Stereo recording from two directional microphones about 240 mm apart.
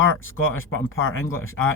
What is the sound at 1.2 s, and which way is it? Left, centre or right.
Speech, centre.